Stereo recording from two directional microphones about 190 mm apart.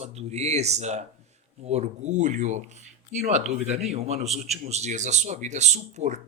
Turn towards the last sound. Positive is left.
turn(degrees=-35)  # may be behind; listen again after turning